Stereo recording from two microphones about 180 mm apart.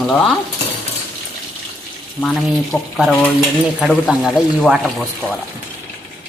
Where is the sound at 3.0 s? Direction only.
5° left (ahead or behind).